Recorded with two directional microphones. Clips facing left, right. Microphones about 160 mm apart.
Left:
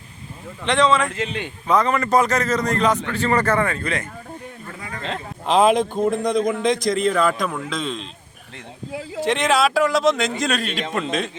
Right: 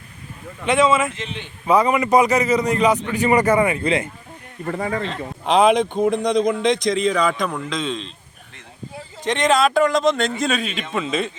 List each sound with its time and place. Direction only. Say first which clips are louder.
0.6 s a man's voice: right 1 dB; 5° right (ahead or behind)
4.6 s speech: right 11 dB; 60° right (ahead or behind)
5.5 s a man's voice: right 1 dB; centre (ahead or behind)
8.9 s a sound: left 12 dB; 90° left
9.2 s a man's voice: right 1 dB; 5° left (ahead or behind)